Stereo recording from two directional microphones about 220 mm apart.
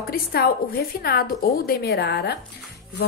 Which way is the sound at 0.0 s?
45° left (ahead or behind).